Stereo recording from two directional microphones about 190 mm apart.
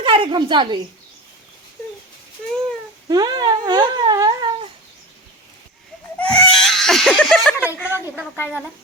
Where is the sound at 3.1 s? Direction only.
20° right (ahead or behind).